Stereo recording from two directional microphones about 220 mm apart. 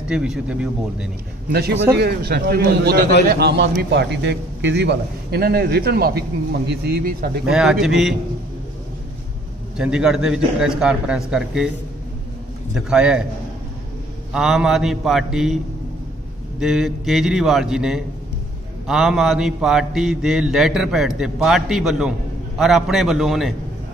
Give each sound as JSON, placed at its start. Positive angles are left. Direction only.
{"t": 0.1, "sound": "mantra", "side_deg": -5}
{"t": 1.5, "sound": "a man's voice", "side_deg": -50}
{"t": 7.4, "sound": "mantra", "side_deg": -5}
{"t": 9.8, "sound": "mantra", "side_deg": -5}
{"t": 12.7, "sound": "mantra", "side_deg": -5}
{"t": 14.3, "sound": "mantra", "side_deg": -5}